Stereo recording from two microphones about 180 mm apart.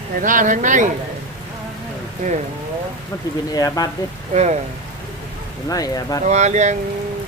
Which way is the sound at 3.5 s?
20° left (ahead or behind).